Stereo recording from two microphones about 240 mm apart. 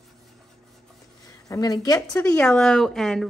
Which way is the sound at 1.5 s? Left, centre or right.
Centre.